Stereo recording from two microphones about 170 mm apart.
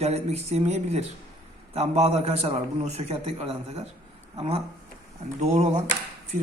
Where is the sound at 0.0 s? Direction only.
40° right (ahead or behind).